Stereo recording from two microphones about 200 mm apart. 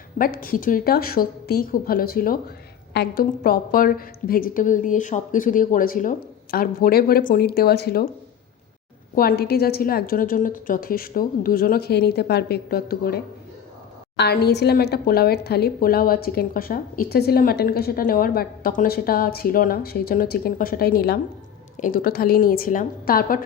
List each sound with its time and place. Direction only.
0.2 s a woman's voice: 45° left (ahead or behind)
9.1 s a woman's voice: 50° left (ahead or behind)